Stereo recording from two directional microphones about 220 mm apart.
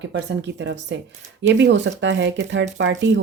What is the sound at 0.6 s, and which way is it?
Speech, 55° right (ahead or behind).